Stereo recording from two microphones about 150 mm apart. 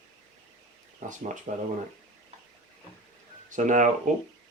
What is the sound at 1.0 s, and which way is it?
Speech, 55° right (ahead or behind).